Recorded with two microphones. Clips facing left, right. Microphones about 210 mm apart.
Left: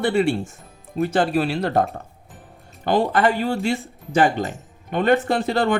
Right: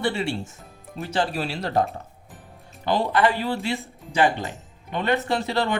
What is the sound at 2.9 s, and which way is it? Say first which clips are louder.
Speech: left 3 dB; 50° left (ahead or behind).